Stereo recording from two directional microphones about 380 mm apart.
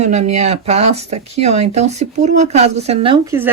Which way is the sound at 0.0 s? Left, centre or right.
Centre.